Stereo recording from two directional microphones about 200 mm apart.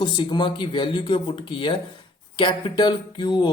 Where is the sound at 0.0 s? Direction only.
20° left (ahead or behind).